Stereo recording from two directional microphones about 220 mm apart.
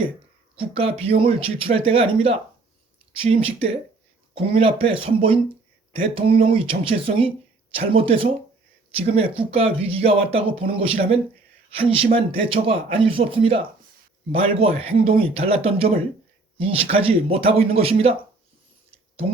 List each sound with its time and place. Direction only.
0.5 s speech: 25° right (ahead or behind)
3.2 s speech: 25° right (ahead or behind)